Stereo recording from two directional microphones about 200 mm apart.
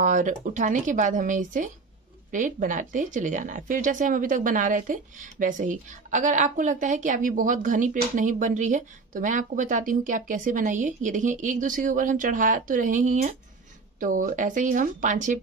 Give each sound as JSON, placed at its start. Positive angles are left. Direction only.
{"t": 0.0, "sound": "a woman's voice", "side_deg": -40}